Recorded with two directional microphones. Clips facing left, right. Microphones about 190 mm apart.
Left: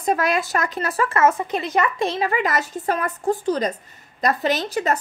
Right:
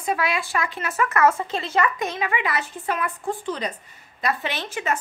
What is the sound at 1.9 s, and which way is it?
A child's voice, 35° left (ahead or behind).